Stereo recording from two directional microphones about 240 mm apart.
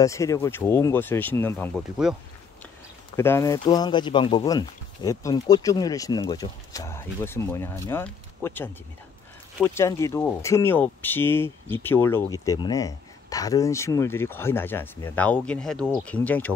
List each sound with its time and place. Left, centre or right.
0.0 s speech: centre
3.2 s speech: centre